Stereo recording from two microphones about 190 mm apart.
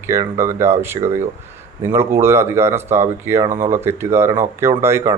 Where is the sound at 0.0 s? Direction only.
15° right (ahead or behind).